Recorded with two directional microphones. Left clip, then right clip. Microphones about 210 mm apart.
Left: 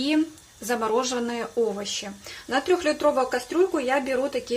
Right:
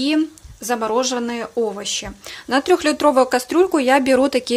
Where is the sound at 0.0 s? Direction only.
25° right (ahead or behind).